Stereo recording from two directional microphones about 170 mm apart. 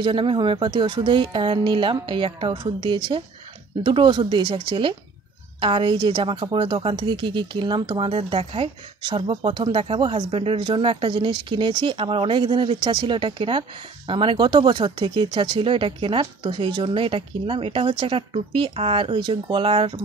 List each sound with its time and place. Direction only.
0.0 s speech: 30° right (ahead or behind)